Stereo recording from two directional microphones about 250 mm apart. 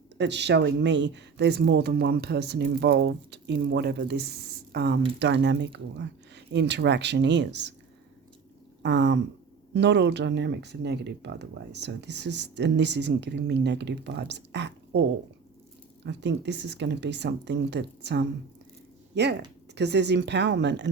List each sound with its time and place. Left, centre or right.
0.2 s speech: right
8.8 s speech: right
16.0 s speech: right